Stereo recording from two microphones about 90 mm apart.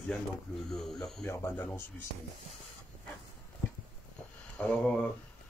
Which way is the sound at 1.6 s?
20° left (ahead or behind).